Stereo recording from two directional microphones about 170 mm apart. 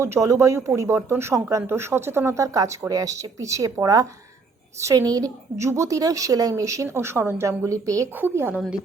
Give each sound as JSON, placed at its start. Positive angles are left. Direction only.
{"t": 0.0, "sound": "a woman's voice", "side_deg": -20}